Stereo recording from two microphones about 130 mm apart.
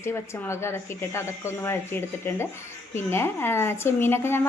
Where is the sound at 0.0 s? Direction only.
20° left (ahead or behind).